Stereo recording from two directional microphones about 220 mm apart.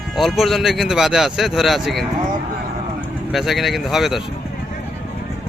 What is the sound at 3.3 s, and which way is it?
Speech, centre (ahead or behind).